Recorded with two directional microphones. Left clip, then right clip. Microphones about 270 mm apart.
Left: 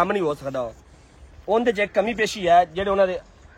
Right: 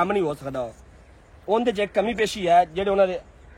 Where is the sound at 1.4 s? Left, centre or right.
Centre.